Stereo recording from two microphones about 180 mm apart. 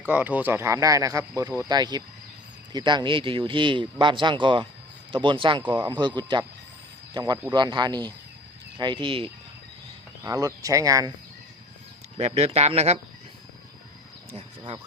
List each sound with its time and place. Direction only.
0.1 s speech: 10° right (ahead or behind); by 9.3 s 30° right (ahead or behind)
10.2 s speech: 20° right (ahead or behind)
12.1 s speech: 35° right (ahead or behind)